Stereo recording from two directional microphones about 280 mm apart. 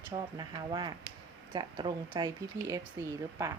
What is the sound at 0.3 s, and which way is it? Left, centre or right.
Speech, centre.